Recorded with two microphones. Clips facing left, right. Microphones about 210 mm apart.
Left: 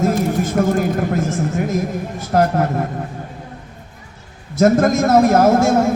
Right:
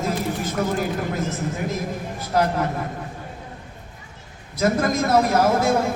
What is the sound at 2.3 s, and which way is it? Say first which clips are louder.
Speech: left 5 dB; 50° left (ahead or behind).